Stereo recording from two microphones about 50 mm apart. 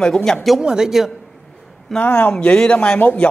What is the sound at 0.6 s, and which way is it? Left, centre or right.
Speech, centre.